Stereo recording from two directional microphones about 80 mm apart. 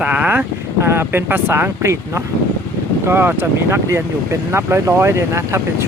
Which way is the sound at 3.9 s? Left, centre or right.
Right.